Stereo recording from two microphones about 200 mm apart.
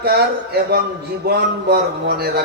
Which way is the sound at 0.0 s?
50° right (ahead or behind).